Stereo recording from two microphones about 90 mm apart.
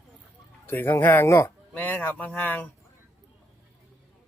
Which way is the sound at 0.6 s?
20° left (ahead or behind).